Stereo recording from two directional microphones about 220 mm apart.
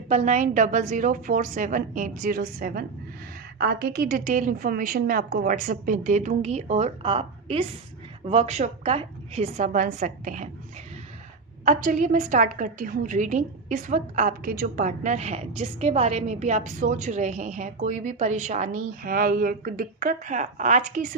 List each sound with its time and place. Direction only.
0.1 s a woman's voice: 35° right (ahead or behind)
11.6 s a woman's voice: 35° right (ahead or behind)